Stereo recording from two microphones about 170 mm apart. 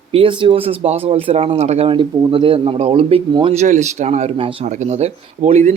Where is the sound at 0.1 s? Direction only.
30° right (ahead or behind).